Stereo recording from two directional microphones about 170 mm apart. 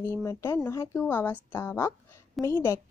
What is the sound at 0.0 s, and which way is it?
A woman's voice, 15° left (ahead or behind).